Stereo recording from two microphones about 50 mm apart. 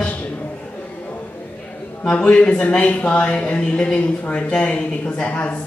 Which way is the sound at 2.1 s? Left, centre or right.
Left.